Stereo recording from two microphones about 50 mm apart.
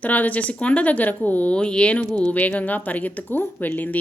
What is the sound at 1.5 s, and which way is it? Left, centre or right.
A woman's voice, centre.